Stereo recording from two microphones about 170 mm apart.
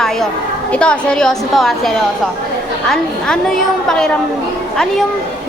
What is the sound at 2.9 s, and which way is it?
A woman's voice, 5° left (ahead or behind).